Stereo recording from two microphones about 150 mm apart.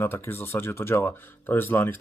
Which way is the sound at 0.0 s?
15° left (ahead or behind).